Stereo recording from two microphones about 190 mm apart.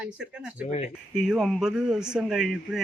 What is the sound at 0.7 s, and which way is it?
Speech, 35° left (ahead or behind).